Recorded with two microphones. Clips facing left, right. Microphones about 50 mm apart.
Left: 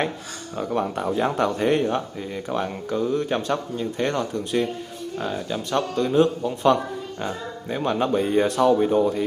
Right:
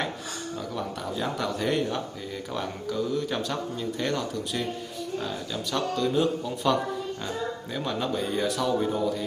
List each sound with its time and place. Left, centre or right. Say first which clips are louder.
0.6 s speech: left 11 dB; left